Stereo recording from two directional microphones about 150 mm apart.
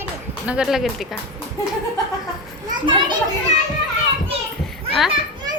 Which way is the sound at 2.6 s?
30° right (ahead or behind).